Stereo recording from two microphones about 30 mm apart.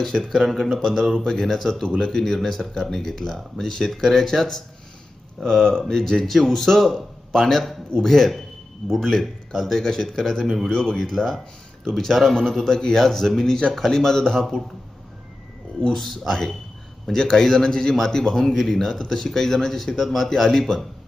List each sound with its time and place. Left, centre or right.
0.0 s speech: centre
1.8 s a man's voice: left
6.2 s speech: centre
10.4 s speech: centre
10.7 s a man's voice: left
14.3 s speech: centre
15.9 s a man's voice: centre